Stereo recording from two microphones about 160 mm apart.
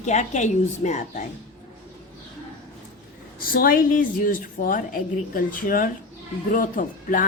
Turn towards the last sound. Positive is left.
turn(degrees=55)  # may be behind; listen again after turning